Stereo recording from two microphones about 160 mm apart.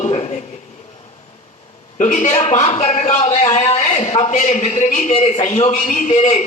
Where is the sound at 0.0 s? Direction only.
40° left (ahead or behind).